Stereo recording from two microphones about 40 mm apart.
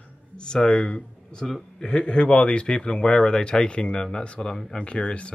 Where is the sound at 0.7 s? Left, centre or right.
Left.